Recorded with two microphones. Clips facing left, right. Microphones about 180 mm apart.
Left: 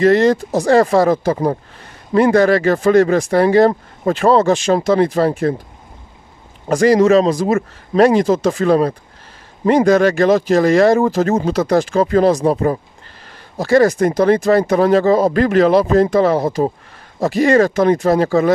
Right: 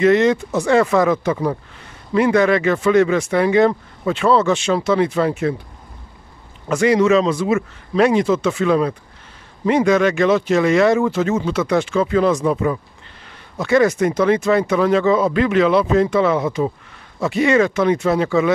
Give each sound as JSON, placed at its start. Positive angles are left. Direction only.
{"t": 0.0, "sound": "speech", "side_deg": 35}
{"t": 6.7, "sound": "speech", "side_deg": 35}